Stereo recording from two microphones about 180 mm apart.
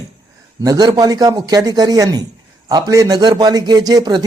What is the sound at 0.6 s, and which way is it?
A man's voice, 20° right (ahead or behind).